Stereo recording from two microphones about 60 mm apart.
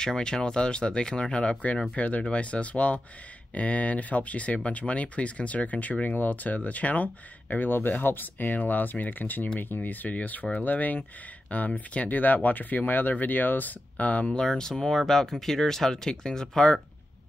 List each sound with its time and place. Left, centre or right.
0.0 s speech: centre
14.4 s speech: centre